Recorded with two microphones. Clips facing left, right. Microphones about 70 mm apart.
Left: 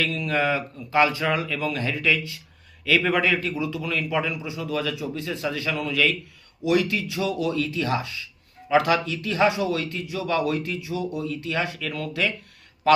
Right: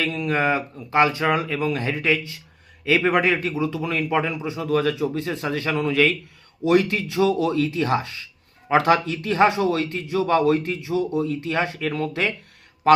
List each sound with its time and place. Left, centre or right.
0.0 s a man's voice: right